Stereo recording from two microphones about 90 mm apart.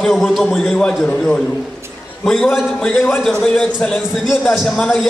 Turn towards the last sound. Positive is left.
turn(degrees=0)  # may be behind; listen again after turning